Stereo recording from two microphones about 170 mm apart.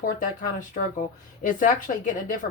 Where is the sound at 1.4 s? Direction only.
50° left (ahead or behind).